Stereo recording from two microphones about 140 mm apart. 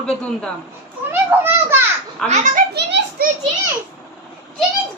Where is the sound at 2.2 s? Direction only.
55° right (ahead or behind).